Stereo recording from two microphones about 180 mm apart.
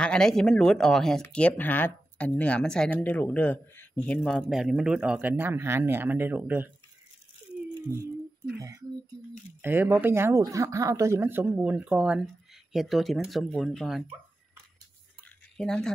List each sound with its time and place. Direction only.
0.0 s speech: 5° left (ahead or behind)
8.5 s speech: 20° right (ahead or behind); by 14.0 s centre (ahead or behind)
15.5 s speech: 5° left (ahead or behind)